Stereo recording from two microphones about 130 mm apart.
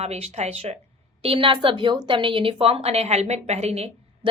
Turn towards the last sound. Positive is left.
turn(degrees=-55)  # may be behind; listen again after turning